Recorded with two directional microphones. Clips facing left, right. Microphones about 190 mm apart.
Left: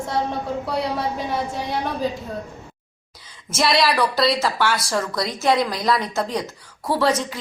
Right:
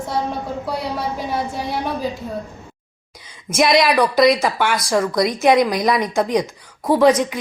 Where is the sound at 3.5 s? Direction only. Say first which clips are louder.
Right 4 dB; 15° right (ahead or behind).